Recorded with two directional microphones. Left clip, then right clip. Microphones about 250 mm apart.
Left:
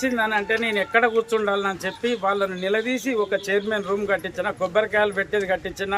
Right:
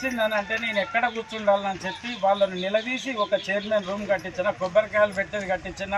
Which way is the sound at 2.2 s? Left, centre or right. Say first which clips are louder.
Right 3 dB; centre.